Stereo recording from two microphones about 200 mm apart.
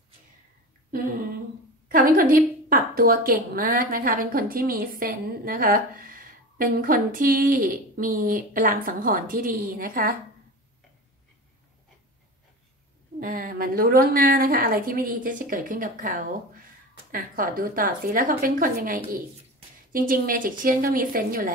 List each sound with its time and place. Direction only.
0.9 s a woman's voice: 45° right (ahead or behind)
13.2 s a woman's voice: 45° right (ahead or behind)